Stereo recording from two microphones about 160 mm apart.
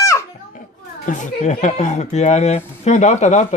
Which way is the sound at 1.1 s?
50° left (ahead or behind).